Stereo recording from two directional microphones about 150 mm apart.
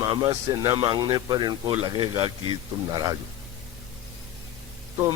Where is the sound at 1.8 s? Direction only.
40° right (ahead or behind).